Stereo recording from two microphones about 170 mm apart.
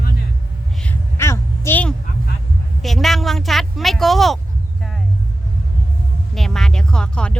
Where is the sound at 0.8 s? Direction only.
10° left (ahead or behind).